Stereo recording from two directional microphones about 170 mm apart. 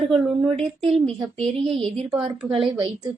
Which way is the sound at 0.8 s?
35° right (ahead or behind).